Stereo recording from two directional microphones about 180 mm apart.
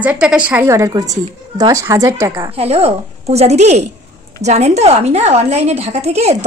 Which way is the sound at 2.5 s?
35° right (ahead or behind).